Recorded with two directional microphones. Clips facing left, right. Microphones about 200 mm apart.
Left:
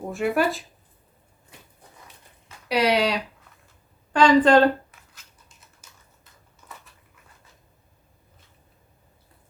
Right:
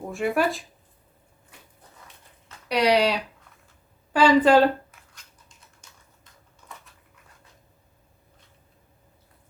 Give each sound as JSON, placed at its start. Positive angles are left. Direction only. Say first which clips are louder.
{"t": 0.1, "sound": "speech", "louder": "left 1 dB", "side_deg": 0}
{"t": 2.6, "sound": "speech", "louder": "right 1 dB", "side_deg": 0}
{"t": 4.1, "sound": "a sound", "louder": "left 1 dB", "side_deg": -5}